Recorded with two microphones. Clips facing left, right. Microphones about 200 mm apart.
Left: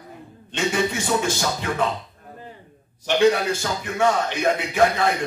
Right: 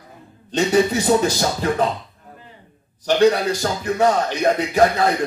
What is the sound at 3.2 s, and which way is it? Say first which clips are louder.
A man's voice: right 2 dB; 40° right (ahead or behind).